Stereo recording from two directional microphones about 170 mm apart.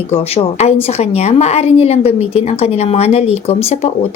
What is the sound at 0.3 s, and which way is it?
Speech, 35° left (ahead or behind).